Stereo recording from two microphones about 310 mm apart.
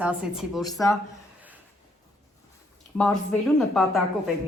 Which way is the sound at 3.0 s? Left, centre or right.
Centre.